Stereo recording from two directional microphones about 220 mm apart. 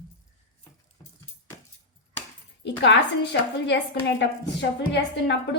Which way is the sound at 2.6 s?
55° left (ahead or behind).